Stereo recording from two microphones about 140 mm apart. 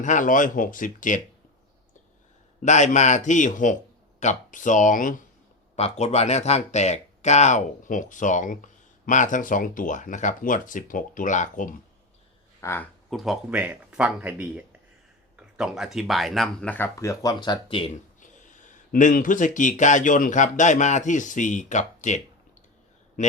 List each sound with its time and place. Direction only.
0.0 s speech: 65° left (ahead or behind)
2.6 s speech: 60° left (ahead or behind)
5.7 s speech: 50° left (ahead or behind); by 11.7 s 65° left (ahead or behind)
12.5 s speech: 15° left (ahead or behind)
13.1 s speech: centre (ahead or behind); by 17.9 s 40° left (ahead or behind)
18.2 s speech: 65° left (ahead or behind)